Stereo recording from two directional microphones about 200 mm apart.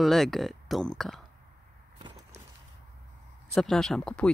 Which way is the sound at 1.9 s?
30° right (ahead or behind).